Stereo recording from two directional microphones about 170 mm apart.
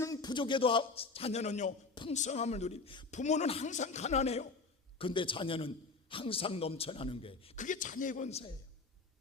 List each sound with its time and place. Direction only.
0.0 s a man's voice: 20° left (ahead or behind)
3.1 s a man's voice: 45° left (ahead or behind)
4.9 s a man's voice: 30° left (ahead or behind)
7.5 s a man's voice: 50° left (ahead or behind)